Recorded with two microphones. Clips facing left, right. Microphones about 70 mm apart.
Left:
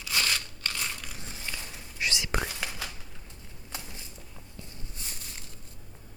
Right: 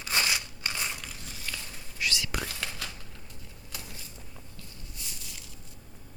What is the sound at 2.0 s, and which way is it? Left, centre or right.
Whispering, left.